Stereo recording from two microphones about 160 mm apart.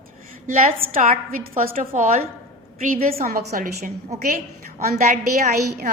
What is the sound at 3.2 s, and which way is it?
A woman's voice, 65° right (ahead or behind).